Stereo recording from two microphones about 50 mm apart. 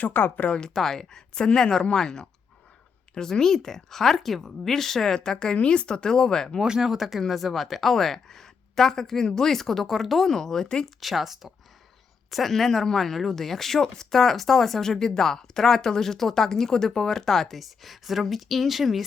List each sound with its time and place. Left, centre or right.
0.0 s speech: left
0.7 s speech: centre
6.6 s speech: centre
10.8 s speech: centre